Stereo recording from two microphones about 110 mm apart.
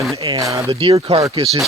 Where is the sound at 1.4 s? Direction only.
60° right (ahead or behind).